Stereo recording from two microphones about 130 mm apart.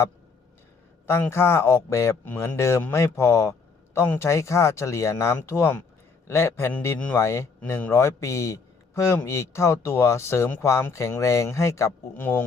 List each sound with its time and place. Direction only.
1.0 s a man's voice: 20° left (ahead or behind)